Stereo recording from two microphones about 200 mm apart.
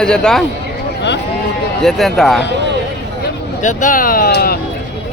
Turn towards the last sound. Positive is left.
turn(degrees=50)  # may be behind; listen again after turning